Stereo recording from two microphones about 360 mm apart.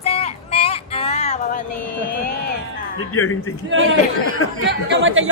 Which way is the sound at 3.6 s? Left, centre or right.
Right.